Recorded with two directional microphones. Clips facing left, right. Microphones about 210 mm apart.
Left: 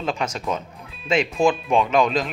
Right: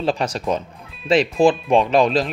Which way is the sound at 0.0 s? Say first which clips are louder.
Right 4 dB; 35° right (ahead or behind).